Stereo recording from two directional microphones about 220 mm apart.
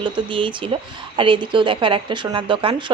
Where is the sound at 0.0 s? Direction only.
20° right (ahead or behind).